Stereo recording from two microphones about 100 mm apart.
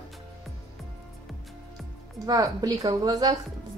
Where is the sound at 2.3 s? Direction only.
40° right (ahead or behind).